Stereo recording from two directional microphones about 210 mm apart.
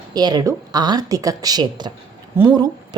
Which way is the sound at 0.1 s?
20° right (ahead or behind).